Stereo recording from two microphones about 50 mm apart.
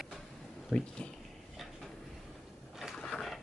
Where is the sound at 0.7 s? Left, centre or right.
Centre.